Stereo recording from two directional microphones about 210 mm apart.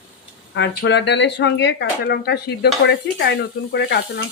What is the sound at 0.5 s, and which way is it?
Speech, 55° left (ahead or behind).